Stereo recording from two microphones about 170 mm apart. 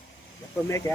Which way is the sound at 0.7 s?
15° left (ahead or behind).